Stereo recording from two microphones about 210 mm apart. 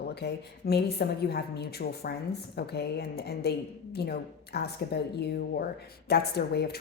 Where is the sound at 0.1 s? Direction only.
50° left (ahead or behind).